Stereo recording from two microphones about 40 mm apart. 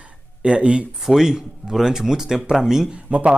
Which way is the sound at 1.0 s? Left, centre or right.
Centre.